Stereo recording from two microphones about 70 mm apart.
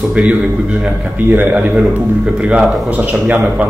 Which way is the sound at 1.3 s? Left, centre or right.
Right.